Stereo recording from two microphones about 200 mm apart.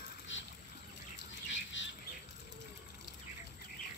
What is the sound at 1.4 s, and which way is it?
Squawk, 70° left (ahead or behind).